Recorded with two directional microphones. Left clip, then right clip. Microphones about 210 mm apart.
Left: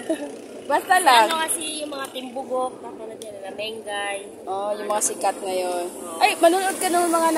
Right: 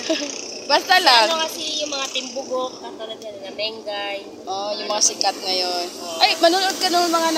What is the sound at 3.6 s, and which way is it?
Speech, 15° left (ahead or behind).